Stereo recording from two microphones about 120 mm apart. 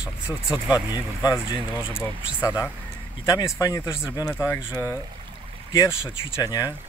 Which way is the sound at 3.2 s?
30° left (ahead or behind).